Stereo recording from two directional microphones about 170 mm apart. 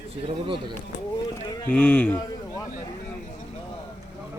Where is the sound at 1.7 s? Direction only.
10° left (ahead or behind).